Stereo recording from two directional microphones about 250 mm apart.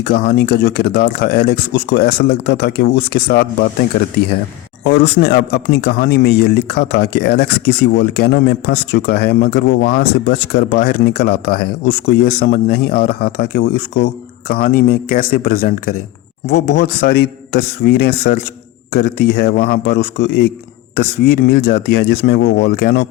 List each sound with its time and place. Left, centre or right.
0.0 s speech: left